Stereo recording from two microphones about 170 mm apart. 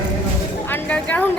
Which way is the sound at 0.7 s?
5° left (ahead or behind).